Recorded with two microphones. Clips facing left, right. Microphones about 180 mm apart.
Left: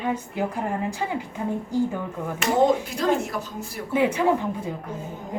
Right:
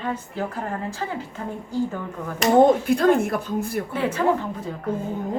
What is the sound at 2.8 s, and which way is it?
Speech, 60° right (ahead or behind).